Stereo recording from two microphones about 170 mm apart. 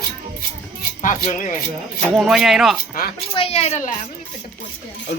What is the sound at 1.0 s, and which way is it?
Speech, 50° left (ahead or behind).